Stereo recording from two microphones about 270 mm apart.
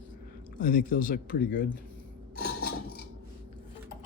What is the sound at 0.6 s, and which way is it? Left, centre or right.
Speech, left.